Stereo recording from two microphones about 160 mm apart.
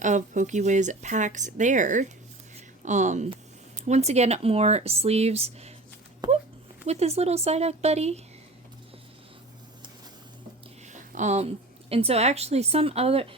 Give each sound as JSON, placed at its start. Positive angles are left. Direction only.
{"t": 0.0, "sound": "speech", "side_deg": -50}
{"t": 6.2, "sound": "a sound", "side_deg": -30}
{"t": 6.8, "sound": "speech", "side_deg": -40}
{"t": 10.8, "sound": "a woman's voice", "side_deg": -50}